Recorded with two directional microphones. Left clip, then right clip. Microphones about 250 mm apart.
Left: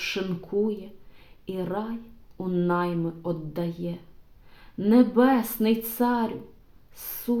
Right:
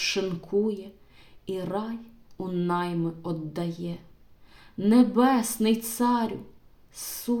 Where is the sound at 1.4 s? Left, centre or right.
Right.